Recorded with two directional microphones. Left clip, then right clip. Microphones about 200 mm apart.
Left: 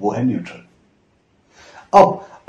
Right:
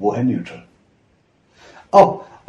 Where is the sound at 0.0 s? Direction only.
20° left (ahead or behind).